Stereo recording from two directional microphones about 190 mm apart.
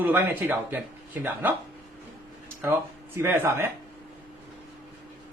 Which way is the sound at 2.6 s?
10° right (ahead or behind).